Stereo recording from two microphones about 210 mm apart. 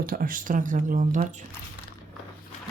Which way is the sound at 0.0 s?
45° right (ahead or behind).